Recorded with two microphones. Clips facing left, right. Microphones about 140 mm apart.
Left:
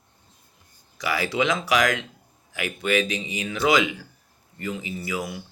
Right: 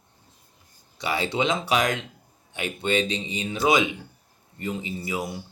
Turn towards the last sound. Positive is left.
turn(degrees=-25)  # may be behind; listen again after turning